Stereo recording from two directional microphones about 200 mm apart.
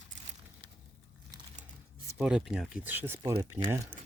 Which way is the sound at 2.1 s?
5° right (ahead or behind).